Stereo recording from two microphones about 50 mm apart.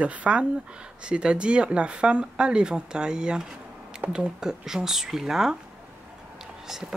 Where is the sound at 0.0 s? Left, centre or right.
Right; by 5.6 s centre.